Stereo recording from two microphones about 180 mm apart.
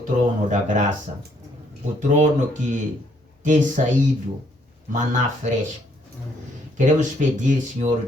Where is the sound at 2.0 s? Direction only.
45° right (ahead or behind).